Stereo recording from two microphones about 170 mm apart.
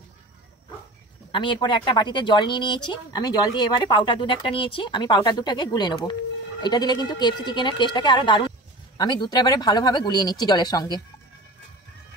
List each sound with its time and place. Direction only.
1.3 s speech: 30° left (ahead or behind)